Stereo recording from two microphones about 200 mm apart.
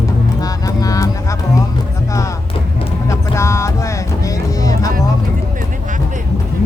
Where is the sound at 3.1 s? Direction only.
15° left (ahead or behind).